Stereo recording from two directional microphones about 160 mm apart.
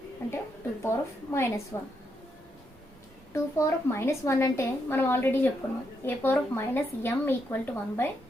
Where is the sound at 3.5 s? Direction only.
15° left (ahead or behind).